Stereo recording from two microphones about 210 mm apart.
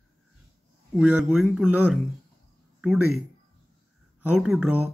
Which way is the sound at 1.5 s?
5° right (ahead or behind).